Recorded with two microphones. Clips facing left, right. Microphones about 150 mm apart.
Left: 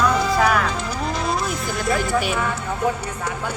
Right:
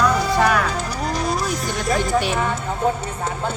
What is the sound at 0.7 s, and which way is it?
Music, 40° right (ahead or behind).